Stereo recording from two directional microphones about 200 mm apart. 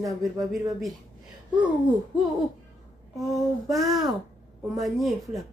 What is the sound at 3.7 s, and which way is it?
Speech, centre (ahead or behind).